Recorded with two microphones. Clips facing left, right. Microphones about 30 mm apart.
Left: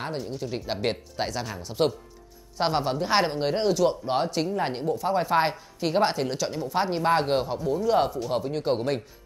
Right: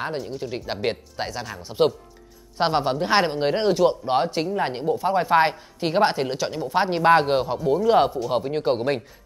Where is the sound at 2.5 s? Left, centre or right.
Right.